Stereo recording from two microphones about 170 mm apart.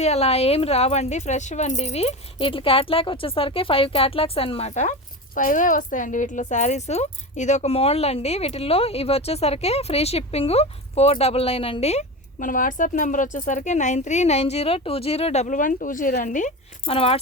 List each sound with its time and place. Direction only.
0.0 s a woman's voice: 40° left (ahead or behind)
16.8 s speech: 35° left (ahead or behind)